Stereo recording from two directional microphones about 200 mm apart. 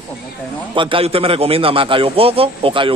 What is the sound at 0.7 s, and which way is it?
A man's voice, 25° right (ahead or behind).